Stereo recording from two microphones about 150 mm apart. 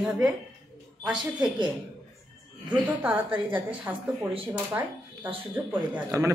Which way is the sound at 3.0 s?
10° right (ahead or behind).